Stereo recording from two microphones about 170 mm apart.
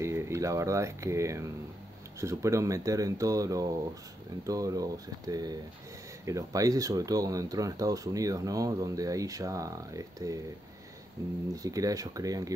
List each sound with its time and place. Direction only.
0.0 s speech: 15° right (ahead or behind)